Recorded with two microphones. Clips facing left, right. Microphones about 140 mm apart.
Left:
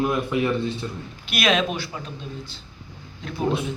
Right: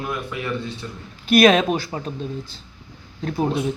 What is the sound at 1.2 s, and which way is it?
Speech, 45° right (ahead or behind).